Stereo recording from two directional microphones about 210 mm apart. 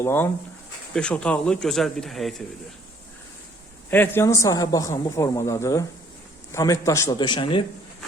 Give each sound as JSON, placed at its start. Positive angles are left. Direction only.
{"t": 0.0, "sound": "a man's voice", "side_deg": 10}
{"t": 3.8, "sound": "a man's voice", "side_deg": 10}